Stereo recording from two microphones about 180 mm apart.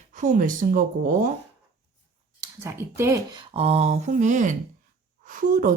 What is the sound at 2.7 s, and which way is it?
Speech, 15° right (ahead or behind).